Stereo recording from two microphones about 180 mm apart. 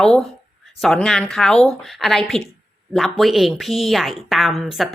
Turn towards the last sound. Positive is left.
turn(degrees=0)  # may be behind; listen again after turning